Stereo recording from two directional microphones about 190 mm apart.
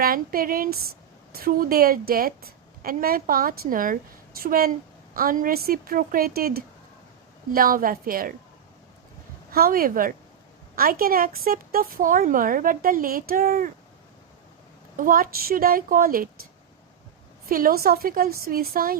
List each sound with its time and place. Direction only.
0.0 s speech: 50° right (ahead or behind)
9.5 s speech: 50° right (ahead or behind)
14.9 s speech: 45° right (ahead or behind)
17.5 s speech: 50° right (ahead or behind)